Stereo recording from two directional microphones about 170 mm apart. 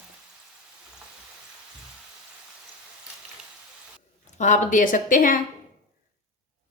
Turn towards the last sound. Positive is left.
turn(degrees=50)  # may be behind; listen again after turning